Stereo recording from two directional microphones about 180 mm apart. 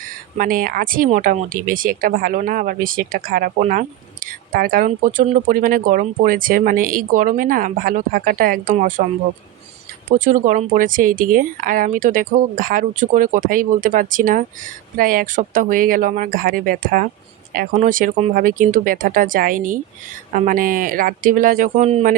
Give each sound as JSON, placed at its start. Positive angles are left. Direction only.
{"t": 0.3, "sound": "speech", "side_deg": -50}
{"t": 10.1, "sound": "speech", "side_deg": -50}